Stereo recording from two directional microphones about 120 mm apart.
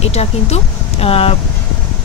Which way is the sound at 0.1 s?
65° left (ahead or behind).